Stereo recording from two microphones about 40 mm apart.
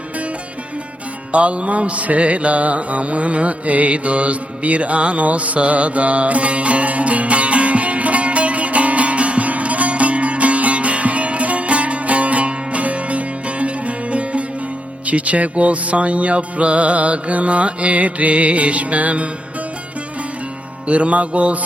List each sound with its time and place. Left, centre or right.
1.3 s mantra: right
15.0 s music: right
20.8 s music: right